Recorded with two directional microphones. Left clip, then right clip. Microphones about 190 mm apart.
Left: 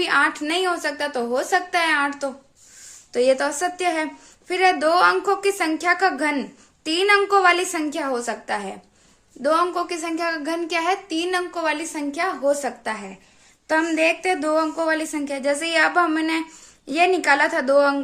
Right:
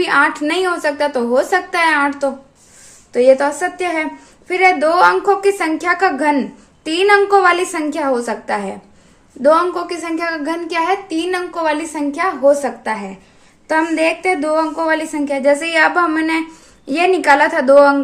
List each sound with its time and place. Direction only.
0.0 s a woman's voice: 15° left (ahead or behind)
3.1 s a woman's voice: 25° left (ahead or behind)